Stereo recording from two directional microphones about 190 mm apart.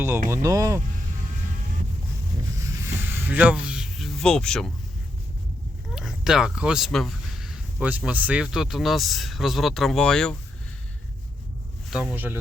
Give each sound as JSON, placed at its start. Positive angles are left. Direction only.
{"t": 0.3, "sound": "speech", "side_deg": -20}
{"t": 2.6, "sound": "a sound", "side_deg": -15}
{"t": 5.9, "sound": "speech", "side_deg": 0}
{"t": 11.9, "sound": "speech", "side_deg": -5}